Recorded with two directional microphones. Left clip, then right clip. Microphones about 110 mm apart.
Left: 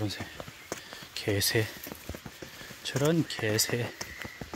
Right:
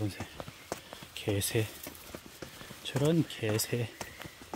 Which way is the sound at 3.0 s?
Centre (ahead or behind).